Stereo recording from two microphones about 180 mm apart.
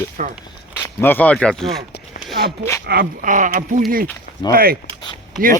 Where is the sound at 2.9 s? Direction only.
55° right (ahead or behind).